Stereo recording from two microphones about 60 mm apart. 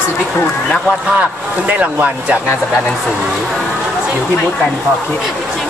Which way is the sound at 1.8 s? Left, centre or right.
Right.